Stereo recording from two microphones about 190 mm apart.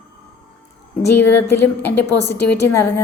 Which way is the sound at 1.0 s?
10° left (ahead or behind).